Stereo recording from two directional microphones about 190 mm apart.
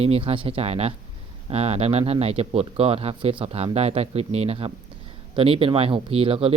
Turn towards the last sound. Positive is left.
turn(degrees=-30)  # may be behind; listen again after turning